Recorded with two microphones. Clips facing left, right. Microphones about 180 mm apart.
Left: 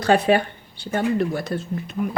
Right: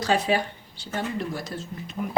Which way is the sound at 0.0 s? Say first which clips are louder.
Left 6 dB; 60° left (ahead or behind).